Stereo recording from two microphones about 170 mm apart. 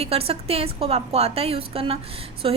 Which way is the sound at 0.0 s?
35° right (ahead or behind).